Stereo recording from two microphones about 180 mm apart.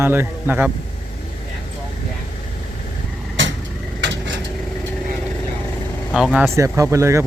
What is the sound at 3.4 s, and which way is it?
Vehicle, 90° right.